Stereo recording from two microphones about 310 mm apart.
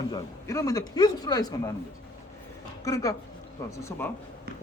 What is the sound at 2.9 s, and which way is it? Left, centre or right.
Speech, centre.